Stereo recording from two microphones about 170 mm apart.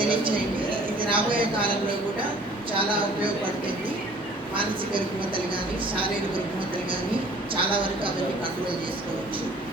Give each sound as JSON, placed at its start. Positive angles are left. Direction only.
{"t": 0.0, "sound": "a sound", "side_deg": -30}
{"t": 2.7, "sound": "speech", "side_deg": -30}
{"t": 4.5, "sound": "speech", "side_deg": -30}
{"t": 7.5, "sound": "speech", "side_deg": -30}